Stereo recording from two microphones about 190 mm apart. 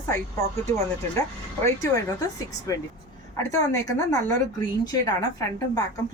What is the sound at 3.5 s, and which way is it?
A woman's voice, 20° left (ahead or behind).